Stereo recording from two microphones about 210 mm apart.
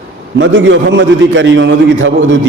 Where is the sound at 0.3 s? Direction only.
65° right (ahead or behind).